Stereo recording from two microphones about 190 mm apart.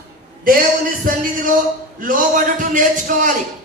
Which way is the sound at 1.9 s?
45° right (ahead or behind).